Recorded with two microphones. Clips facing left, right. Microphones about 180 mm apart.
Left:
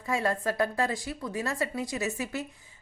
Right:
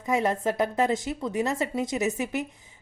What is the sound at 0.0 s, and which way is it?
A woman's voice, 20° right (ahead or behind).